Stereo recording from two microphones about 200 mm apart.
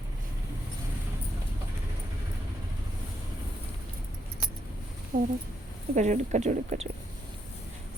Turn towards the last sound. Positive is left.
turn(degrees=-35)  # may be behind; listen again after turning